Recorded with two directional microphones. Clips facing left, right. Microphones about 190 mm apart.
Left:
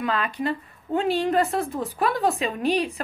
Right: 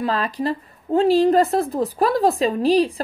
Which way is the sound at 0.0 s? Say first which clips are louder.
Right 3 dB; 35° right (ahead or behind).